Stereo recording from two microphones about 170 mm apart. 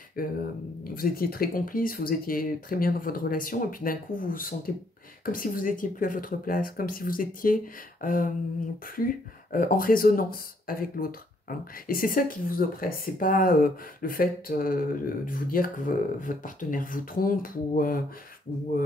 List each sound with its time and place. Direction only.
0.2 s speech: 55° left (ahead or behind)
18.5 s speech: 30° left (ahead or behind)